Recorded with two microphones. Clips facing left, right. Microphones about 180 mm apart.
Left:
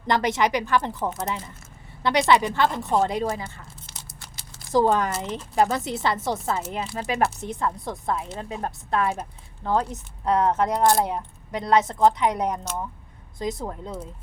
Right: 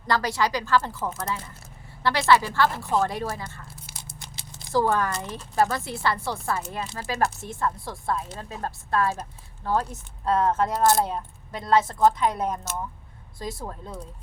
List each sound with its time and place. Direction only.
0.1 s speech: 20° left (ahead or behind)
4.0 s a sound: 20° right (ahead or behind)
4.7 s speech: 20° left (ahead or behind)